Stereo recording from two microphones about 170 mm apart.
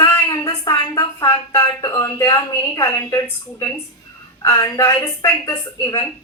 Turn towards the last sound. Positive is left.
turn(degrees=20)  # may be behind; listen again after turning